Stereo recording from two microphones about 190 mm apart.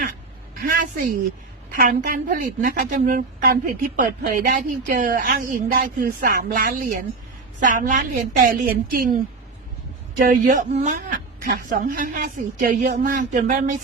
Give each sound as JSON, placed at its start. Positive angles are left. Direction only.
{"t": 0.6, "sound": "a woman's voice", "side_deg": -45}
{"t": 10.2, "sound": "a woman's voice", "side_deg": -45}